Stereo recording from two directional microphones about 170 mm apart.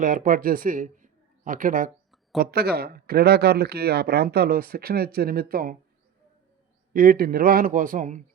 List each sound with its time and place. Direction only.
0.0 s speech: 50° right (ahead or behind)
2.4 s speech: 65° right (ahead or behind)
6.9 s a man's voice: 60° right (ahead or behind)